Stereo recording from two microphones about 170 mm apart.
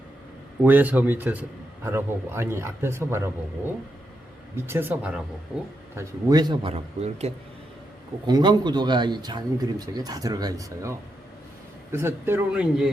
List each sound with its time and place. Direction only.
0.6 s a man's voice: 10° right (ahead or behind)
4.5 s a man's voice: 15° right (ahead or behind)
6.0 s speech: 20° right (ahead or behind); by 7.3 s 40° right (ahead or behind)
8.3 s a man's voice: 25° right (ahead or behind); by 12.9 s 5° right (ahead or behind)